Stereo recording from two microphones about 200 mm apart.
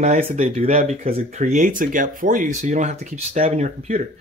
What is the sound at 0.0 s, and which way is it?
Speech, 35° right (ahead or behind).